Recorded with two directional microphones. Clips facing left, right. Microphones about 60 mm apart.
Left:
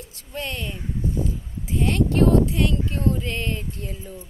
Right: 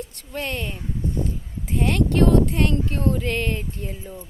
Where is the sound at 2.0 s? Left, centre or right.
Right.